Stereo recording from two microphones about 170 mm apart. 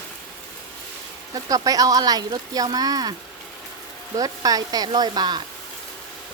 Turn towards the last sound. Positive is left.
turn(degrees=-25)  # may be behind; listen again after turning